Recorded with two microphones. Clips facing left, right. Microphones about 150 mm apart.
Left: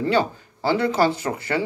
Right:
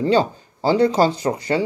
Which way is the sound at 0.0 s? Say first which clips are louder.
Right 3 dB; 20° right (ahead or behind).